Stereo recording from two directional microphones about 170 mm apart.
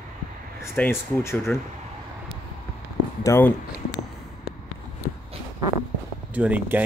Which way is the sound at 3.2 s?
15° left (ahead or behind).